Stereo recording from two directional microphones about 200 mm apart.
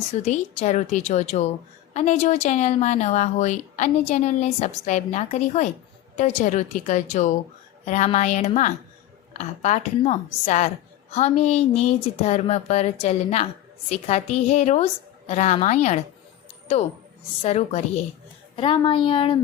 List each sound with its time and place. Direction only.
0.1 s a woman's voice: 35° left (ahead or behind)
17.4 s a woman's voice: 30° left (ahead or behind)